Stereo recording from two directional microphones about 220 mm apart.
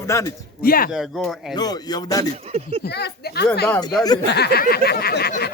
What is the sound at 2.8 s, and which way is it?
Speech, 45° left (ahead or behind).